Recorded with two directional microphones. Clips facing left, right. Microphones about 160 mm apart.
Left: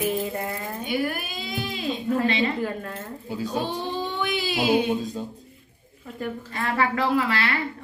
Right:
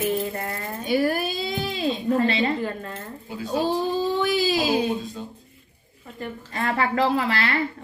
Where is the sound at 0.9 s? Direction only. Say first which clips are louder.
Right 6 dB; 40° right (ahead or behind).